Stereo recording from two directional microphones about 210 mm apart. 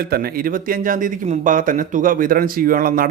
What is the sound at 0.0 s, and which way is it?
Speech, 45° right (ahead or behind).